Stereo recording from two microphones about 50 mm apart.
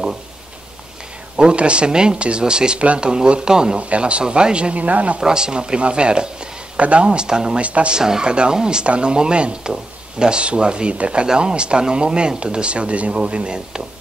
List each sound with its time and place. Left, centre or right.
1.3 s speech: centre
5.2 s speech: centre
8.0 s speech: centre